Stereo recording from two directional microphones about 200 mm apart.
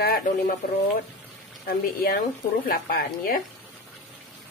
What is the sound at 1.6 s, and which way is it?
Speech, 50° left (ahead or behind).